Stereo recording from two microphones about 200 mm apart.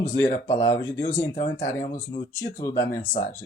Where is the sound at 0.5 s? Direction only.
15° left (ahead or behind).